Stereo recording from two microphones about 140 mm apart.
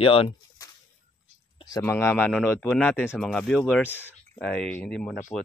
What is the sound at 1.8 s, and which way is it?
Speech, 20° left (ahead or behind).